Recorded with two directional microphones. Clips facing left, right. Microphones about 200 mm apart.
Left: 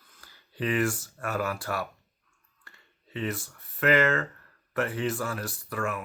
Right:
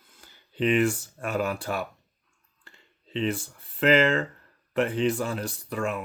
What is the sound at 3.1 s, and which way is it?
Speech, 25° right (ahead or behind).